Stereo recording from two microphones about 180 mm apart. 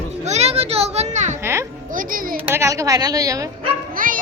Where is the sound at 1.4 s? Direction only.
15° right (ahead or behind).